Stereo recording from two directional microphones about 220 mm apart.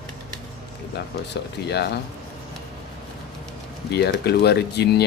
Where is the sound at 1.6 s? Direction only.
45° left (ahead or behind).